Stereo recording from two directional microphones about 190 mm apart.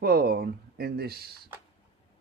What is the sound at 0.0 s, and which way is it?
Speech, 55° right (ahead or behind).